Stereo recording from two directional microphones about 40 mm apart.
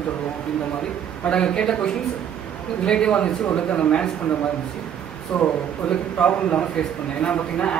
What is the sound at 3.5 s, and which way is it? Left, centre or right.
Speech, left.